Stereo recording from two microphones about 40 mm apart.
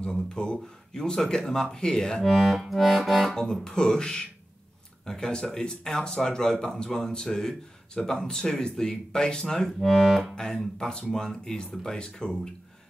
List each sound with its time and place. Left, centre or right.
0.0 s speech: centre
2.2 s music: centre
3.3 s speech: centre
9.8 s music: centre
10.3 s speech: centre